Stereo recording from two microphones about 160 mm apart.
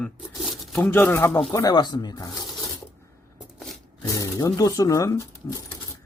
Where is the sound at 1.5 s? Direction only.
25° left (ahead or behind).